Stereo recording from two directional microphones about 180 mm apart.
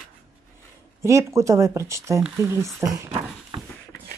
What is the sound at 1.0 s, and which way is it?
Speech, 15° right (ahead or behind).